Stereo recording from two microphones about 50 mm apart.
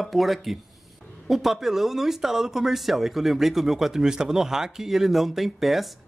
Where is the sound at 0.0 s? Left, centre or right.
Centre.